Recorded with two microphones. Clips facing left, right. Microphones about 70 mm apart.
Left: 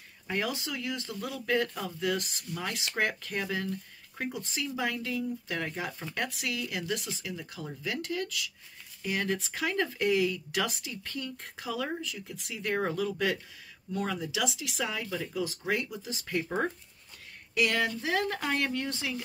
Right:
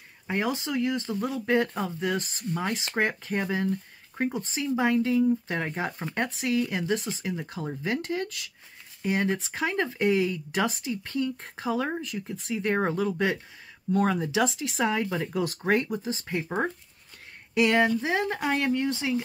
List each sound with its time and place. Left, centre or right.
0.3 s speech: right
17.6 s speech: right